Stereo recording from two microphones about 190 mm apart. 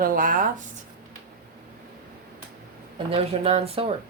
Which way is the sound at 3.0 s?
30° right (ahead or behind).